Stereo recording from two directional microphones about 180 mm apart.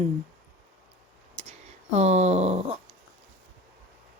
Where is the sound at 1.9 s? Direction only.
35° right (ahead or behind).